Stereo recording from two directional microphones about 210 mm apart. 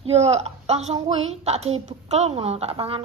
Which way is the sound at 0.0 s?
30° right (ahead or behind).